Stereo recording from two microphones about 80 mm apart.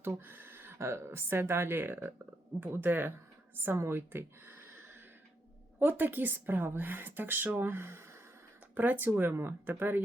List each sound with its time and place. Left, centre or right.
0.0 s speech: right
5.8 s speech: right